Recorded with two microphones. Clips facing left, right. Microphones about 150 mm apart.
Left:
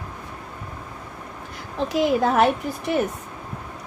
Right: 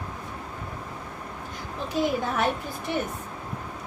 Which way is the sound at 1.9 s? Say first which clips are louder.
Left 6 dB; 80° left.